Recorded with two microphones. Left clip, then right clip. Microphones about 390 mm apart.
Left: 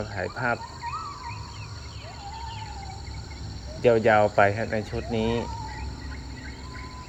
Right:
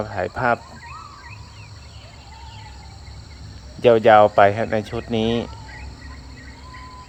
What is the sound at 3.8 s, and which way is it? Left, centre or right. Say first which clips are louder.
Speech: right 7 dB; centre.